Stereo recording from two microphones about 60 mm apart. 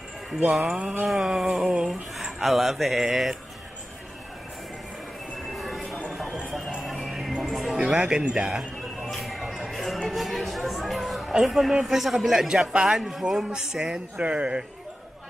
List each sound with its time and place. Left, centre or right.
0.5 s speech: centre
5.6 s train: centre
6.8 s music: centre
7.8 s a man's voice: centre
9.0 s music: centre
10.0 s a sound: centre
11.8 s a man's voice: centre
14.1 s speech: right